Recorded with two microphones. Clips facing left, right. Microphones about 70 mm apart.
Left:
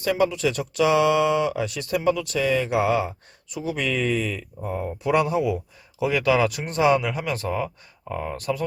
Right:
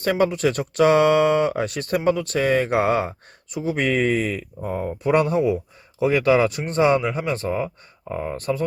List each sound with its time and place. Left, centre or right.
0.0 s speech: right